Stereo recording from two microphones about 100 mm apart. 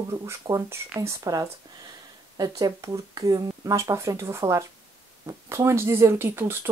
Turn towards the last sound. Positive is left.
turn(degrees=-20)  # may be behind; listen again after turning